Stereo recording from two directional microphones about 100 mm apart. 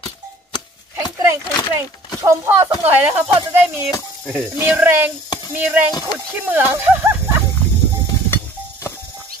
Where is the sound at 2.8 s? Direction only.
20° right (ahead or behind).